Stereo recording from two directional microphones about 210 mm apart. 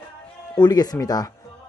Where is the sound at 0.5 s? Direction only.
20° left (ahead or behind).